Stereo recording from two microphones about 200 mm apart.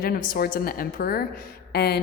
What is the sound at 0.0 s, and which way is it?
Speech, 45° left (ahead or behind).